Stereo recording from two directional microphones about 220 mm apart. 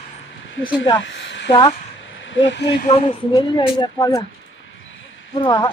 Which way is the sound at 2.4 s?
55° left (ahead or behind).